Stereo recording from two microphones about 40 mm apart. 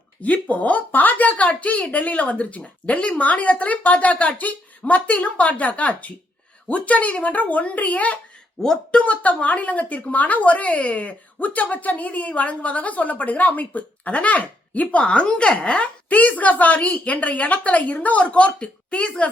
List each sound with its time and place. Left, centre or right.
0.2 s speech: left
8.6 s speech: centre
9.0 s speech: left
16.0 s speech: left
18.2 s speech: left